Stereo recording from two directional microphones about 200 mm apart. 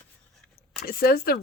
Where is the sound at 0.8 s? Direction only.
50° left (ahead or behind).